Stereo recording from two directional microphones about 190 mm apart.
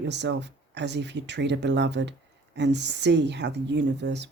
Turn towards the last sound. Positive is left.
turn(degrees=-65)  # may be behind; listen again after turning